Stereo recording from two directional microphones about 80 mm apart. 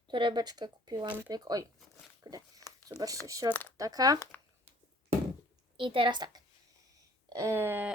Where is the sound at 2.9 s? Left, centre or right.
Right.